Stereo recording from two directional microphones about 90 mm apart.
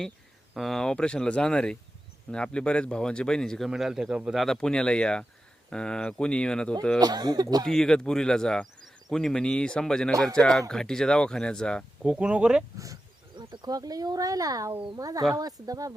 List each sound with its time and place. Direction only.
0.5 s speech: centre (ahead or behind)
3.7 s speech: 5° right (ahead or behind)
4.5 s speech: 10° left (ahead or behind)
7.0 s speech: 50° right (ahead or behind)
7.7 s speech: 5° left (ahead or behind)
12.0 s speech: 10° right (ahead or behind)
12.7 s speech: 40° right (ahead or behind)
13.3 s speech: 55° right (ahead or behind)